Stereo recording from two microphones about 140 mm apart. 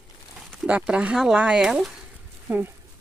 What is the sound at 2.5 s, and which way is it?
Speech, 15° right (ahead or behind).